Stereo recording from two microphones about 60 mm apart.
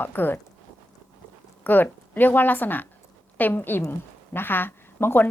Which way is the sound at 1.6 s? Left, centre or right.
Left.